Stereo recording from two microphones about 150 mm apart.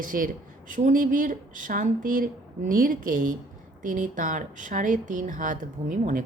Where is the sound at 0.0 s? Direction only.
65° right (ahead or behind).